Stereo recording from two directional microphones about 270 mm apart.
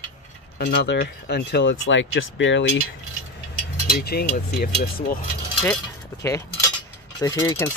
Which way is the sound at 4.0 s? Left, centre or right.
Left.